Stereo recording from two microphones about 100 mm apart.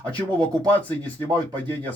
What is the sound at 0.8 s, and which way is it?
Speech, 15° left (ahead or behind).